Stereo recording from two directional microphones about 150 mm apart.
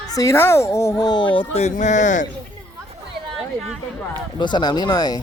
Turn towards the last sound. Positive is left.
turn(degrees=25)  # may be behind; listen again after turning